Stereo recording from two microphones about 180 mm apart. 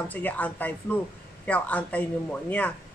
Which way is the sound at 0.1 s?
10° left (ahead or behind).